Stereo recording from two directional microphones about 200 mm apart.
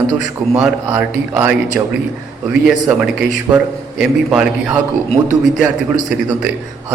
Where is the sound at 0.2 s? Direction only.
5° right (ahead or behind).